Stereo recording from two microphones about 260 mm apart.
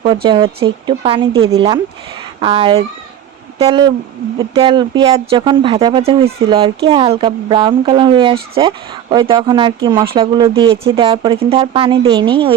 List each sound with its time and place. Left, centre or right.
0.0 s speech: centre